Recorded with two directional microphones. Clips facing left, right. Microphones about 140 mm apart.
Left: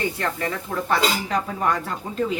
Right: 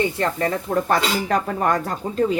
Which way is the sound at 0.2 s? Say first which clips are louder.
Right 5 dB; 35° right (ahead or behind).